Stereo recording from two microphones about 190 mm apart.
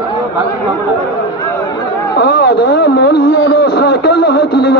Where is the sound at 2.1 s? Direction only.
60° left (ahead or behind).